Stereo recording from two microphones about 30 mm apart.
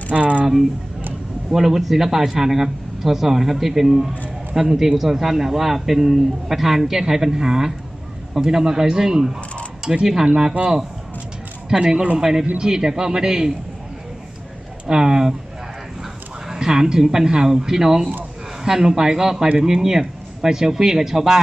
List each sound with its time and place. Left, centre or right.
0.1 s a sound: right
1.5 s a man's voice: centre
10.2 s speech: right
11.7 s speech: right
12.2 s a man's voice: centre
14.9 s speech: right
16.5 s a woman's voice: right